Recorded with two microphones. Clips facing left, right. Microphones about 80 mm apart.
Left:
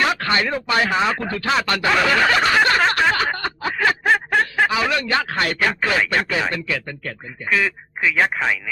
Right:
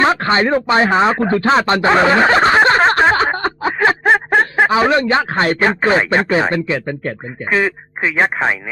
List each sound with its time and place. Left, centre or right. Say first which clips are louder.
0.0 s speech: right 6 dB; right